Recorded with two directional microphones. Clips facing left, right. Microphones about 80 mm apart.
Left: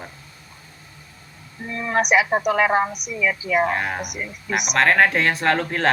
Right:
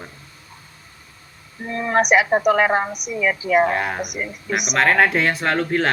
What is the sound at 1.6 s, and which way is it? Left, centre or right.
Speech, right.